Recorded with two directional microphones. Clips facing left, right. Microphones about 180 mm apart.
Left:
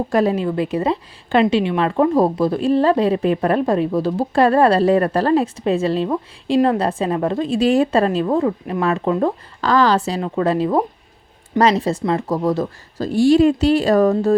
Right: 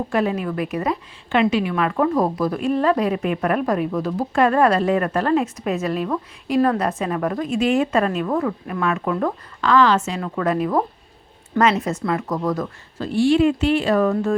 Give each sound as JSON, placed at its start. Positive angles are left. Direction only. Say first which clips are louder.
{"t": 0.1, "sound": "a woman's voice", "louder": "left 5 dB", "side_deg": 35}
{"t": 13.1, "sound": "a woman's voice", "louder": "left 3 dB", "side_deg": 40}